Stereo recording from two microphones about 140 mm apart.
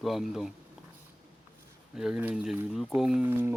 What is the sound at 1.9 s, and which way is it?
Speech, 5° right (ahead or behind).